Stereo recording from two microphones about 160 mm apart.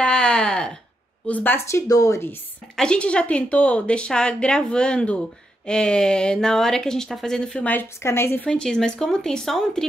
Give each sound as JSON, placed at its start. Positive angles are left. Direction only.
{"t": 0.0, "sound": "a sound", "side_deg": 5}
{"t": 1.2, "sound": "a woman's voice", "side_deg": 10}
{"t": 2.7, "sound": "a woman's voice", "side_deg": 5}
{"t": 8.5, "sound": "speech", "side_deg": 5}